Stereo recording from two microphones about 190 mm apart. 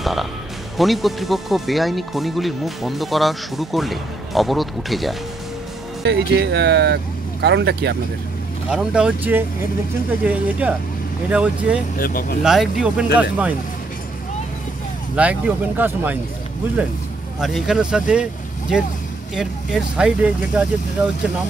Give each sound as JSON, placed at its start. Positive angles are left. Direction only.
{"t": 0.0, "sound": "speech", "side_deg": 0}
{"t": 6.0, "sound": "speech", "side_deg": -65}
{"t": 8.6, "sound": "speech", "side_deg": -5}
{"t": 12.0, "sound": "speech", "side_deg": 50}
{"t": 12.4, "sound": "speech", "side_deg": 0}
{"t": 15.1, "sound": "speech", "side_deg": -5}
{"t": 17.4, "sound": "speech", "side_deg": 0}
{"t": 19.3, "sound": "speech", "side_deg": -5}